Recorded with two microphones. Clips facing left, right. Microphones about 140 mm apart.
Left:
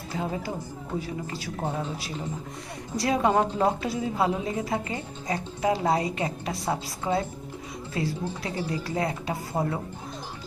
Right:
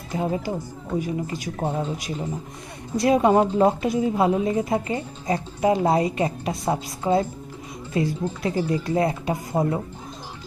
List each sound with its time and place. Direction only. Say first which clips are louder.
0.9 s a woman's voice: right 6 dB; 15° right (ahead or behind)